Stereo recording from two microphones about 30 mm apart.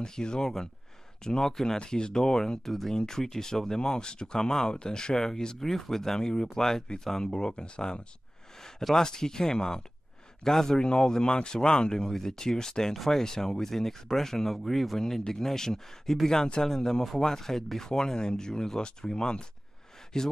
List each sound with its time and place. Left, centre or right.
0.0 s speech: left
1.8 s speech: left
2.6 s speech: centre
7.5 s speech: left
8.9 s speech: centre
10.8 s speech: left
12.9 s speech: centre
13.2 s speech: centre
15.0 s speech: centre